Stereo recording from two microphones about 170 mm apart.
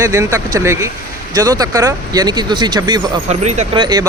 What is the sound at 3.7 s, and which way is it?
Speech, 25° right (ahead or behind).